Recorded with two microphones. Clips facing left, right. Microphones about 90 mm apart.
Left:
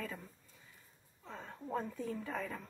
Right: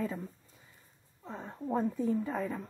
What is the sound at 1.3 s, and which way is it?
Speech, 25° right (ahead or behind).